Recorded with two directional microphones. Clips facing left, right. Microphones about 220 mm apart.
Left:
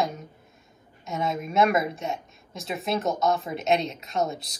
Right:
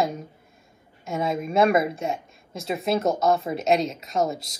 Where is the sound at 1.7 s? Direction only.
Centre (ahead or behind).